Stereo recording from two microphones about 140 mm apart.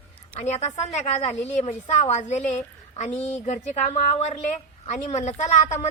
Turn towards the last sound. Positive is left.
turn(degrees=60)  # may be behind; listen again after turning